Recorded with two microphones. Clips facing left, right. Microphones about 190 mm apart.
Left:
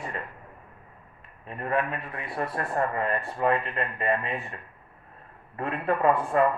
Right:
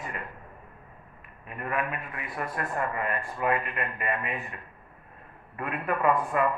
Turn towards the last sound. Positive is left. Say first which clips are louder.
# left 2 dB
turn(degrees=30)  # may be behind; listen again after turning